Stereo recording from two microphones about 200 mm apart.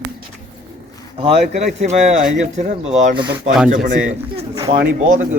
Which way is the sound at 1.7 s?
35° right (ahead or behind).